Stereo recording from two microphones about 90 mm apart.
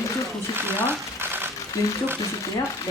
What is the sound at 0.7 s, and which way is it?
Speech, 25° right (ahead or behind).